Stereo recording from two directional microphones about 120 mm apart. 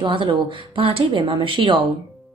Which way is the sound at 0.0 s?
45° right (ahead or behind).